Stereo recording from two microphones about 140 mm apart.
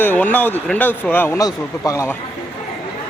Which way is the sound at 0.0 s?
10° left (ahead or behind).